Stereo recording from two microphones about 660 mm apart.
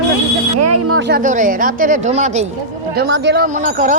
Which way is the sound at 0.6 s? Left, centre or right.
Right.